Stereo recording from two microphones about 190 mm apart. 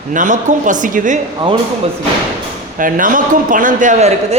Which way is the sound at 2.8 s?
45° right (ahead or behind).